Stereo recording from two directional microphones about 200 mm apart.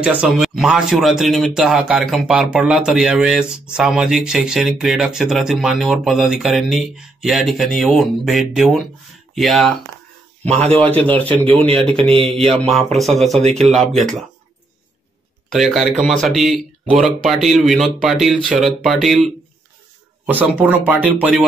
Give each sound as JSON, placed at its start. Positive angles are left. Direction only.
{"t": 0.0, "sound": "a man's voice", "side_deg": -5}
{"t": 13.4, "sound": "a man's voice", "side_deg": -30}
{"t": 13.7, "sound": "speech", "side_deg": 0}
{"t": 15.5, "sound": "speech", "side_deg": 0}